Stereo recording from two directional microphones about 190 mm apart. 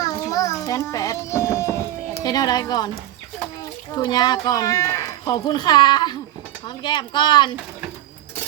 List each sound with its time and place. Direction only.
0.0 s a sound: 15° left (ahead or behind)
2.2 s speech: 20° left (ahead or behind)
3.9 s speech: 20° left (ahead or behind)